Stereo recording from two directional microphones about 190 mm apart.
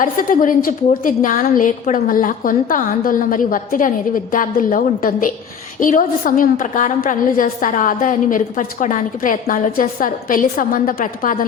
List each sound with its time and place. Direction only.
0.0 s a woman's voice: 45° left (ahead or behind)